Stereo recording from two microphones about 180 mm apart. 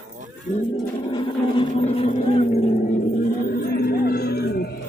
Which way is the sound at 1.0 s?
25° left (ahead or behind).